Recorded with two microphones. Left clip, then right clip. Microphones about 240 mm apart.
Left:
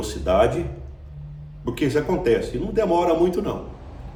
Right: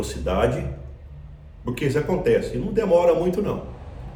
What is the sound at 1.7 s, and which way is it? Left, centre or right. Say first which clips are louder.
Speech: left 1 dB; centre.